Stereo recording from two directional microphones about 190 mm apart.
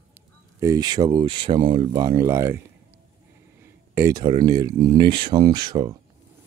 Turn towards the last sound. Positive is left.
turn(degrees=-20)  # may be behind; listen again after turning